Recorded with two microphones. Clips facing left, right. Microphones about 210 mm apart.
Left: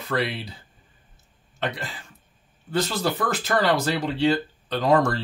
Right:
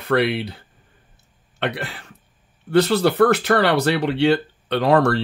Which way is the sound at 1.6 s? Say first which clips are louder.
Right 4 dB; 65° right (ahead or behind).